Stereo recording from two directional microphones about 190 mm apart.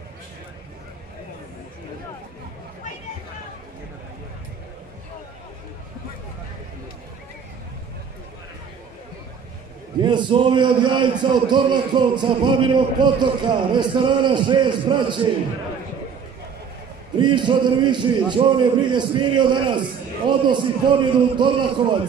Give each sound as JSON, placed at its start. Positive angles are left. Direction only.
{"t": 10.0, "sound": "a man's voice", "side_deg": -25}
{"t": 17.2, "sound": "a man's voice", "side_deg": -25}